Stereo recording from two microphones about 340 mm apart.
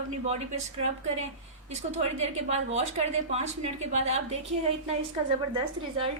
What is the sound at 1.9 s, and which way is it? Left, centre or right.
A woman's voice, centre.